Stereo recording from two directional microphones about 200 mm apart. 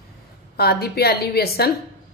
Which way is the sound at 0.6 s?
50° left (ahead or behind).